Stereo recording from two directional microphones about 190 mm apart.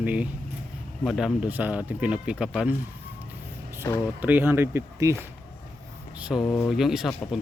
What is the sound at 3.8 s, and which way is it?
Speech, 20° left (ahead or behind).